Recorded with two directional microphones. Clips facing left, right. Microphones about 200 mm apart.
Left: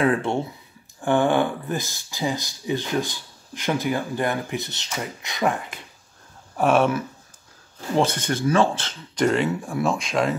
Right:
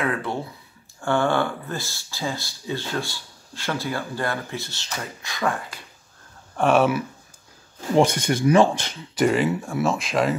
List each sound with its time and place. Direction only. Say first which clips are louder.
0.0 s speech: left 5 dB; 30° left (ahead or behind)
6.5 s speech: even; centre (ahead or behind)